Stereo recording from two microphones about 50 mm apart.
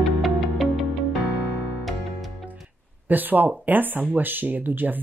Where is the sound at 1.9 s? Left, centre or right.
Centre.